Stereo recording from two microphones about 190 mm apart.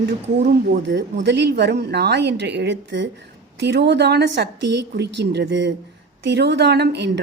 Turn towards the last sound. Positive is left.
turn(degrees=-65)  # may be behind; listen again after turning